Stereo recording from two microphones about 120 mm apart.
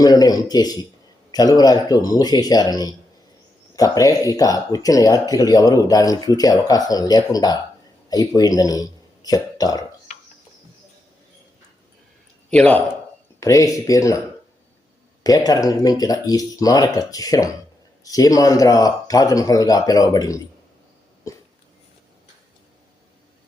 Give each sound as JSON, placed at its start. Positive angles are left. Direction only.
{"t": 0.0, "sound": "speech", "side_deg": 30}
{"t": 12.5, "sound": "a man's voice", "side_deg": 10}
{"t": 13.4, "sound": "speech", "side_deg": 25}
{"t": 15.2, "sound": "speech", "side_deg": 30}